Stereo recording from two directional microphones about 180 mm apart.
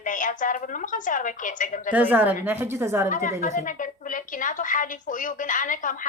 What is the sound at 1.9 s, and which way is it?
A woman's voice, 10° right (ahead or behind).